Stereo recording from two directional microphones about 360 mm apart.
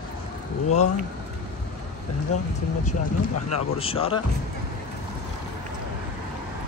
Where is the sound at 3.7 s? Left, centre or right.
Centre.